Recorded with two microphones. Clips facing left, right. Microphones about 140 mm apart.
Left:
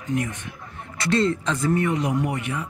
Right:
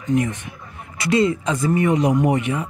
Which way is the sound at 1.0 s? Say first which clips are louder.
Right 3 dB; 5° right (ahead or behind).